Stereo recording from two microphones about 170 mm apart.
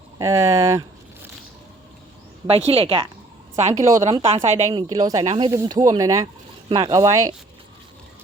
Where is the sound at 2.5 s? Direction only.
35° right (ahead or behind).